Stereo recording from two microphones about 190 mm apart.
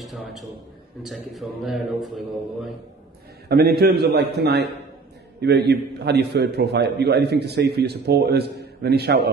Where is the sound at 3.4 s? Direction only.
55° right (ahead or behind).